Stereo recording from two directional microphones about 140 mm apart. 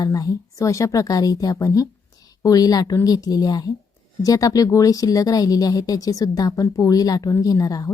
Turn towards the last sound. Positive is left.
turn(degrees=25)  # may be behind; listen again after turning